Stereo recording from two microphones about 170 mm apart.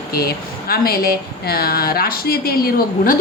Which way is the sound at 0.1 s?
65° left (ahead or behind).